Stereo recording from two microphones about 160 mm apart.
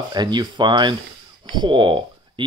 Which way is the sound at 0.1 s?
25° right (ahead or behind).